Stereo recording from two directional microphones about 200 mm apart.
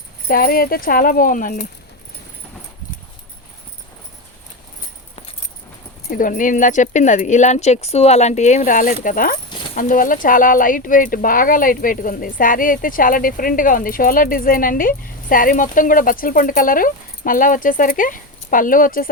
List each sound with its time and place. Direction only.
0.3 s speech: 45° left (ahead or behind)
6.1 s speech: 40° left (ahead or behind)